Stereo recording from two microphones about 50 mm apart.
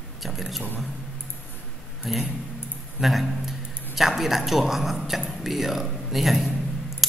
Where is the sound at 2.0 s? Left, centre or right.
Centre.